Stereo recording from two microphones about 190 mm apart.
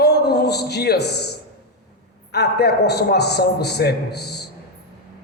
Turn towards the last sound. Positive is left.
turn(degrees=60)  # may be behind; listen again after turning